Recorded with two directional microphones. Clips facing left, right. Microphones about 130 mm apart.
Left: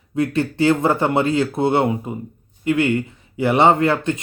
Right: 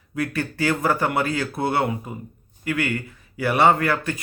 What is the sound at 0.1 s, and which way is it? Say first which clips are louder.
Speech: left 6 dB; 25° left (ahead or behind).